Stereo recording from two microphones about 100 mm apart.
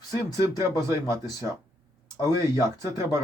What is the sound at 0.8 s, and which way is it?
Speech, 30° right (ahead or behind).